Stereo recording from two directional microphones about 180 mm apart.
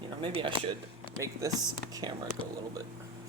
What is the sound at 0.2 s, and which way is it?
Speech, 25° right (ahead or behind).